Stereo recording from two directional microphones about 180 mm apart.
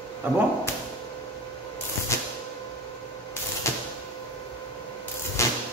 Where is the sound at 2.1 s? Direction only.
15° left (ahead or behind).